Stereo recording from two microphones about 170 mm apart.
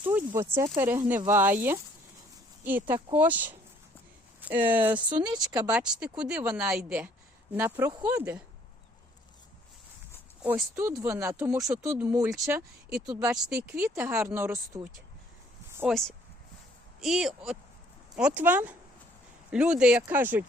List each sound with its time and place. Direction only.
0.0 s speech: 10° right (ahead or behind)
5.2 s speech: 25° right (ahead or behind)
5.7 s speech: 5° right (ahead or behind)
10.4 s speech: 10° right (ahead or behind)
13.2 s speech: 5° right (ahead or behind)
15.9 s speech: centre (ahead or behind)